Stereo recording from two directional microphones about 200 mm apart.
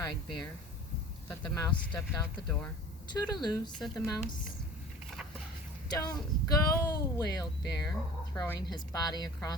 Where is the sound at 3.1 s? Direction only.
20° left (ahead or behind).